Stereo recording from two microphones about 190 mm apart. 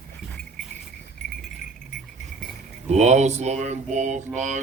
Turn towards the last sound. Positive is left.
turn(degrees=-40)  # may be behind; listen again after turning